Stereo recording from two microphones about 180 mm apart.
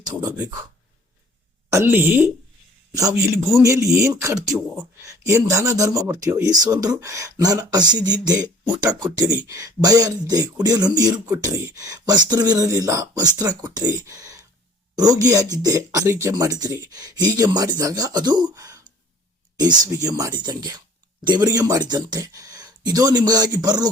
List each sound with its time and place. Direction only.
1.7 s speech: 15° right (ahead or behind)
3.3 s a man's voice: centre (ahead or behind)
3.6 s speech: 15° right (ahead or behind)